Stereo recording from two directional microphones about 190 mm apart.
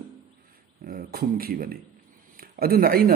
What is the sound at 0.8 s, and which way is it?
A man's voice, 50° right (ahead or behind).